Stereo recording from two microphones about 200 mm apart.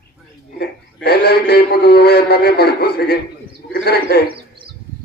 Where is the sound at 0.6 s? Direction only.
50° left (ahead or behind).